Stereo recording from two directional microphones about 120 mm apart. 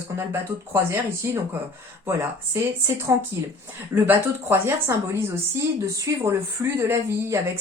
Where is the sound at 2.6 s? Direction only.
20° right (ahead or behind).